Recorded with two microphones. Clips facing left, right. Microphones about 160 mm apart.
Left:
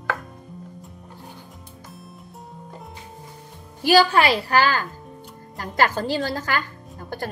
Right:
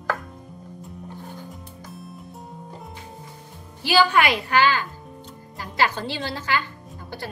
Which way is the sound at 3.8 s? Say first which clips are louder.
Left 2 dB; 35° left (ahead or behind).